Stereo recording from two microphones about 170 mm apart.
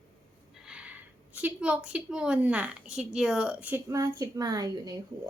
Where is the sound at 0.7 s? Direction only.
5° right (ahead or behind).